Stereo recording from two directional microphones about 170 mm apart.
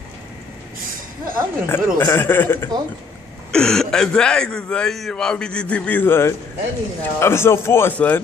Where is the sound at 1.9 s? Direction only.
15° left (ahead or behind).